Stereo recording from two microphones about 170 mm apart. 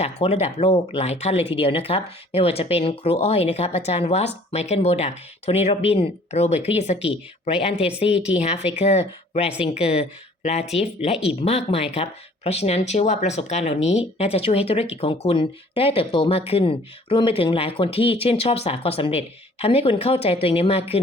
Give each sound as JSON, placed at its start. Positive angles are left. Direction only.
{"t": 0.0, "sound": "speech", "side_deg": 40}
{"t": 11.1, "sound": "speech", "side_deg": -5}
{"t": 11.4, "sound": "speech", "side_deg": 35}